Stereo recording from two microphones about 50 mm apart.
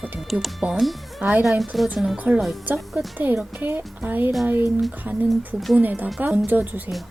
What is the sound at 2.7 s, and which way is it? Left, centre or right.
Speech, centre.